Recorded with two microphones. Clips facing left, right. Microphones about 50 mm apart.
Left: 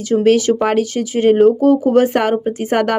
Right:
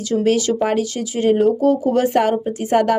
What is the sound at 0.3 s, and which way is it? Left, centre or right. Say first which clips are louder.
Speech: left 4 dB; left.